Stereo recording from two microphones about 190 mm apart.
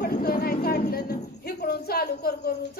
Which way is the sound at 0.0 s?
55° left (ahead or behind).